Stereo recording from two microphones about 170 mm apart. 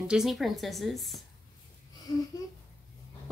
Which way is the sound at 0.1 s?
Centre (ahead or behind).